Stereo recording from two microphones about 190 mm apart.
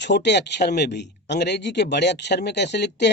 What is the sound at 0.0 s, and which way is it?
Speech, 65° left (ahead or behind).